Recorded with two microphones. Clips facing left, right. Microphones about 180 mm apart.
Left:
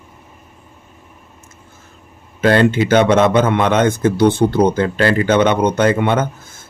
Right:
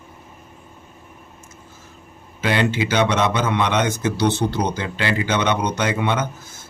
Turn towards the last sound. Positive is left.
turn(degrees=55)  # may be behind; listen again after turning